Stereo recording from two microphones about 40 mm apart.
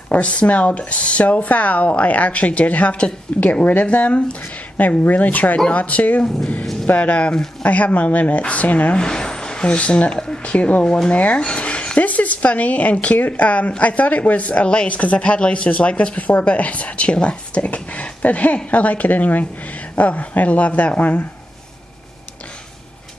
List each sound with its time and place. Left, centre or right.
0.1 s a woman's voice: left
7.7 s speech: left
8.9 s speech: left
10.1 s a sound: centre
10.5 s speech: left
11.4 s a sound: left
12.0 s speech: left